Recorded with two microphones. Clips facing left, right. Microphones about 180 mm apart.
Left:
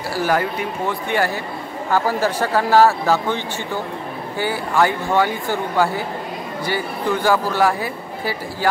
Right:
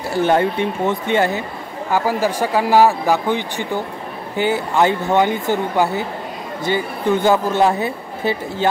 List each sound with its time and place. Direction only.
0.1 s a man's voice: 25° right (ahead or behind)